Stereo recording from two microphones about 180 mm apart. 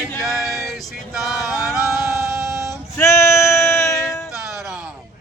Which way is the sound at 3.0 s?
15° left (ahead or behind).